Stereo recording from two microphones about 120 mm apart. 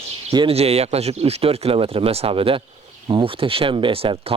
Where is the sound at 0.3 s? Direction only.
55° right (ahead or behind).